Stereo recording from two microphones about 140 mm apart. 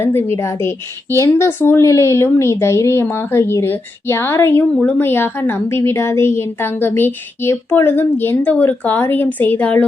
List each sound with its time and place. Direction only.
0.0 s speech: 15° left (ahead or behind)